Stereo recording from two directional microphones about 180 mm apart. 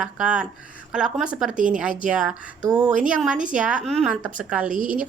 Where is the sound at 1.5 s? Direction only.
45° right (ahead or behind).